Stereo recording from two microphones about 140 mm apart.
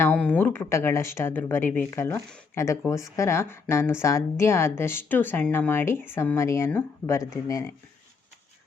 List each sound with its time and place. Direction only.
0.0 s speech: 10° left (ahead or behind)